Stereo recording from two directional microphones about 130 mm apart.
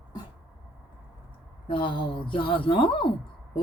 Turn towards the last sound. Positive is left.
turn(degrees=40)  # may be behind; listen again after turning